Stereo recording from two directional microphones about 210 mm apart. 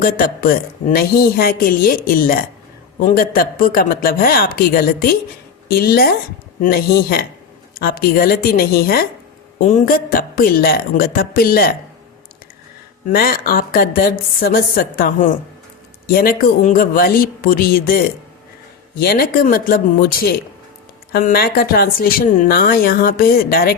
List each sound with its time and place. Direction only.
0.0 s speech: 45° left (ahead or behind)
13.1 s speech: 45° left (ahead or behind)